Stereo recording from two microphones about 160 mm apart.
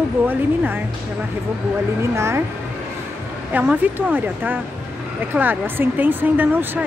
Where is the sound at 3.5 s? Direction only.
10° right (ahead or behind).